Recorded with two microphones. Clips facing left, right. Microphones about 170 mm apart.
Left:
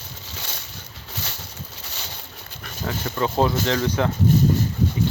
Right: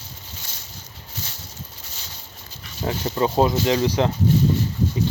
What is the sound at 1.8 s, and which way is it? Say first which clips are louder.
Dog: left 4 dB; 70° left (ahead or behind).